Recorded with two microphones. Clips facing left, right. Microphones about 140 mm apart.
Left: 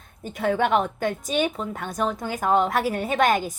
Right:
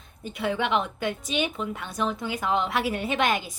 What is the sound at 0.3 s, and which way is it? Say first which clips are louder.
A woman's voice: left 4 dB; 45° left (ahead or behind).